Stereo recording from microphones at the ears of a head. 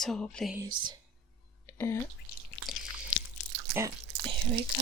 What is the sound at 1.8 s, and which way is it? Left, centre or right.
Drip, left.